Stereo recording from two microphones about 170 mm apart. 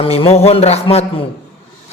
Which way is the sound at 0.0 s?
35° left (ahead or behind).